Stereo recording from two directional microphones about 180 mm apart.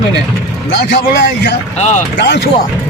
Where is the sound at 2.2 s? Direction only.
70° left (ahead or behind).